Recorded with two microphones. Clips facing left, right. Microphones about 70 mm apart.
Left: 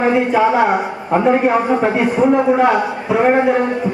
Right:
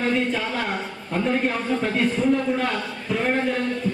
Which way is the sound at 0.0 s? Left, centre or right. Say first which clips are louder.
Left 10 dB; centre.